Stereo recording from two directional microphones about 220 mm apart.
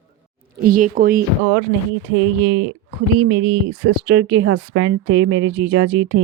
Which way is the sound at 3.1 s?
60° right (ahead or behind).